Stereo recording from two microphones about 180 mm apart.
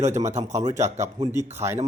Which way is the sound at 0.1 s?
15° right (ahead or behind).